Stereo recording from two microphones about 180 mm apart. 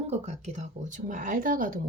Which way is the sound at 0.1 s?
40° right (ahead or behind).